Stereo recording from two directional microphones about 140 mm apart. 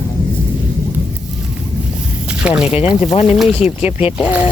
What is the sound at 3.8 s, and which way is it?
Speech, 45° left (ahead or behind).